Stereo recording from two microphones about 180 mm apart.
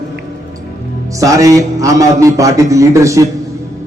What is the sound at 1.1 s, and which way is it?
A man's voice, 20° right (ahead or behind).